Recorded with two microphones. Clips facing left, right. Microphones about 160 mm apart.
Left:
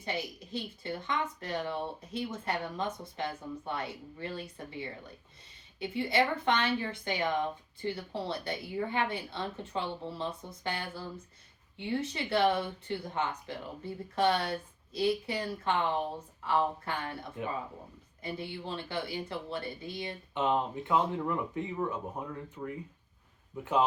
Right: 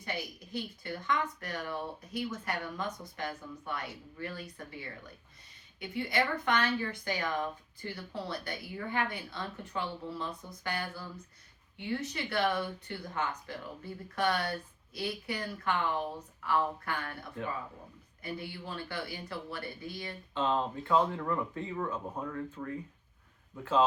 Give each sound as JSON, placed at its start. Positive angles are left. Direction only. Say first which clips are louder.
{"t": 0.0, "sound": "a woman's voice", "louder": "left 3 dB", "side_deg": 25}